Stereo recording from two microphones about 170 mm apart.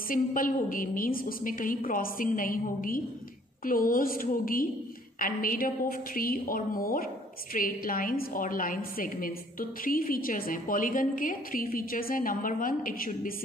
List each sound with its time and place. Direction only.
0.1 s a woman's voice: 55° left (ahead or behind)